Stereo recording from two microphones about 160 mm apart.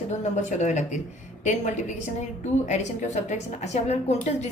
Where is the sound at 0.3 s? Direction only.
50° left (ahead or behind).